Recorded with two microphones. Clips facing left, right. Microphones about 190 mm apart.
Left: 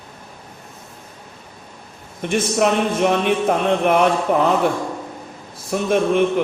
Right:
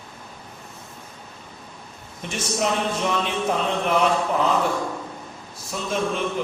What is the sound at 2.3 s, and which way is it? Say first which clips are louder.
Speech: left 7 dB; 60° left (ahead or behind).